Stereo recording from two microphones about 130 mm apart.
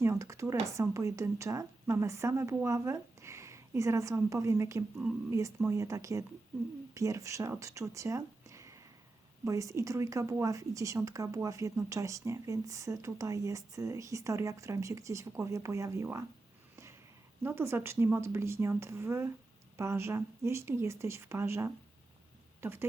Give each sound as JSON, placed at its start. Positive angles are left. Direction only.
{"t": 0.0, "sound": "a woman's voice", "side_deg": -25}
{"t": 17.4, "sound": "speech", "side_deg": -20}